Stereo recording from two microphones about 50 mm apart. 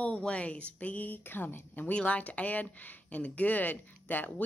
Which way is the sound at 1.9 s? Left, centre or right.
Left.